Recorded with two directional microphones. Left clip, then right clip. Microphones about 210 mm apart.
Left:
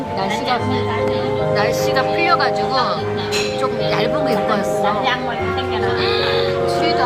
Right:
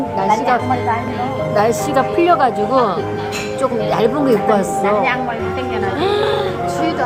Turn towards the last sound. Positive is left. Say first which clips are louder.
# right 1 dB
turn(degrees=-40)  # may be behind; listen again after turning